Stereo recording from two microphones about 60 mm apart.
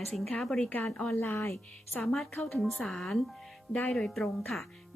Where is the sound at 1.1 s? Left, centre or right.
Left.